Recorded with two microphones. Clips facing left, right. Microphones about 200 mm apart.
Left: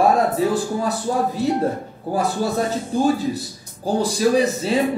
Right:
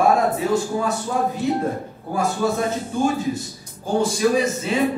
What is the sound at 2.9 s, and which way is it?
A man's voice, 35° left (ahead or behind).